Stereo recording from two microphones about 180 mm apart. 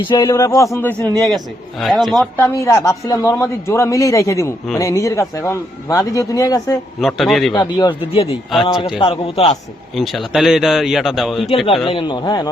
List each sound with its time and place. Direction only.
0.1 s a man's voice: 20° left (ahead or behind)
1.8 s a man's voice: centre (ahead or behind)
2.3 s a man's voice: 15° left (ahead or behind)
7.0 s a man's voice: centre (ahead or behind)
7.5 s a man's voice: 25° left (ahead or behind)
9.9 s a man's voice: centre (ahead or behind)
11.5 s a man's voice: 30° left (ahead or behind)